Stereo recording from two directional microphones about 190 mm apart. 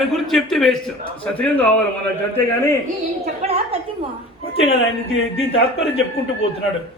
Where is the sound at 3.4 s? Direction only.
30° right (ahead or behind).